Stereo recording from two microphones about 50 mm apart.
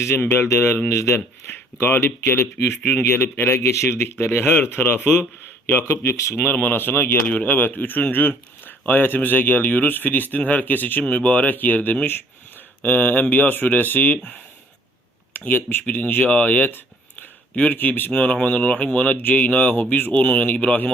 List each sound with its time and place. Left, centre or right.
0.2 s speech: left
0.4 s speech: left
1.5 s speech: left
5.8 s speech: left
6.3 s speech: left
6.7 s speech: left
7.3 s speech: left
11.0 s speech: left
11.5 s speech: left
15.3 s speech: left
17.5 s a man's voice: left
17.7 s speech: left
18.1 s speech: left